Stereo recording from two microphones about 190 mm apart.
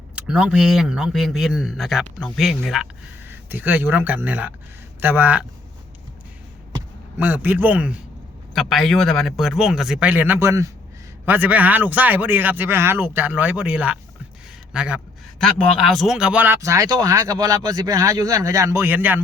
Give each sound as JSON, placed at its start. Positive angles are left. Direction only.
{"t": 0.2, "sound": "a man's voice", "side_deg": -5}
{"t": 7.2, "sound": "a man's voice", "side_deg": -10}